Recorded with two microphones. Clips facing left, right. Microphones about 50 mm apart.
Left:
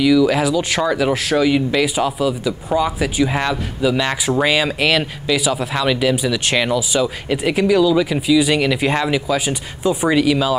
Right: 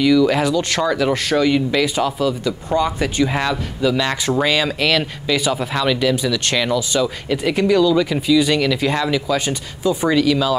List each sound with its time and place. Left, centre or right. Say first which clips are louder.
0.0 s speech: even; centre